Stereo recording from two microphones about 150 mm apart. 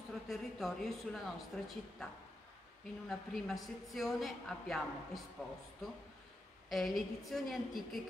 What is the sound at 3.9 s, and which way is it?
Speech, centre (ahead or behind).